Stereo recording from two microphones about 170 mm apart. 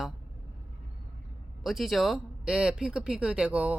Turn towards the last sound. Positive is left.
turn(degrees=-5)  # may be behind; listen again after turning